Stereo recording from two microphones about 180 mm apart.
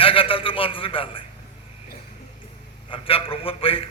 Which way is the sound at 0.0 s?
30° left (ahead or behind).